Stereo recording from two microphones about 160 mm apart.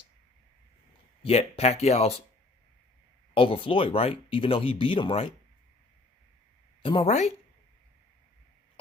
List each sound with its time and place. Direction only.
1.2 s speech: 40° left (ahead or behind)
3.3 s speech: 35° left (ahead or behind)
6.8 s speech: 35° left (ahead or behind)
7.1 s speech: 45° left (ahead or behind)